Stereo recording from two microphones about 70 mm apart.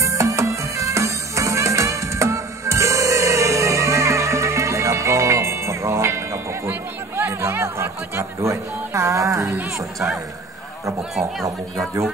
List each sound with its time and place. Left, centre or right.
0.0 s music: right
6.7 s speech: right
11.8 s speech: right